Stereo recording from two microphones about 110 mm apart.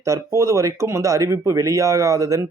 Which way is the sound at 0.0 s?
30° right (ahead or behind).